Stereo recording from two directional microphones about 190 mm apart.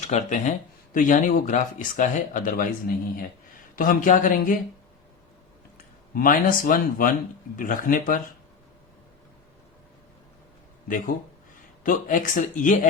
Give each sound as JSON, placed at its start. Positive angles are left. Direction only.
{"t": 0.1, "sound": "speech", "side_deg": 40}
{"t": 3.8, "sound": "speech", "side_deg": 45}
{"t": 5.7, "sound": "speech", "side_deg": 45}
{"t": 10.8, "sound": "speech", "side_deg": 45}